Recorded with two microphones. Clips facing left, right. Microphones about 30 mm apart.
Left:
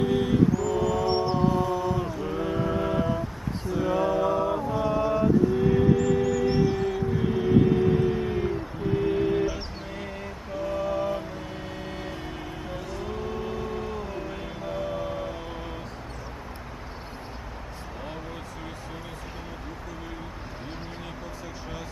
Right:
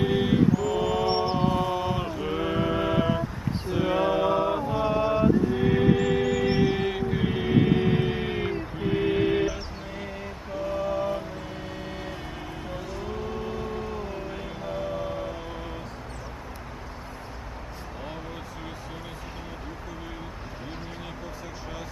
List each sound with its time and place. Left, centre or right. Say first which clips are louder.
0.0 s mantra: even; right
4.6 s music: right 1 dB; right
6.2 s music: even; right
10.6 s mantra: even; centre
12.6 s vehicle: even; centre